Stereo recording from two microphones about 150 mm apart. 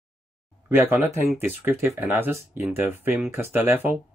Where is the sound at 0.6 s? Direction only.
15° right (ahead or behind).